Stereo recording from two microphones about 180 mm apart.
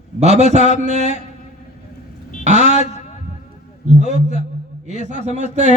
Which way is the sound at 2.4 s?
40° right (ahead or behind).